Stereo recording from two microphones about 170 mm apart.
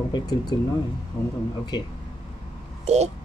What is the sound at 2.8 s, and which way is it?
Speech, 40° right (ahead or behind).